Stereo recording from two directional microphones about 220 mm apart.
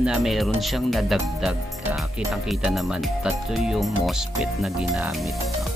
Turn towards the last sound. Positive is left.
turn(degrees=0)  # may be behind; listen again after turning